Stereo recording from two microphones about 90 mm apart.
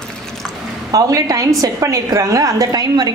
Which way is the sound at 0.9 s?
40° right (ahead or behind).